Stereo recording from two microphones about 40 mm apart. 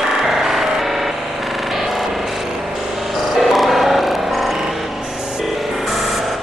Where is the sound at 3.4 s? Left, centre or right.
Centre.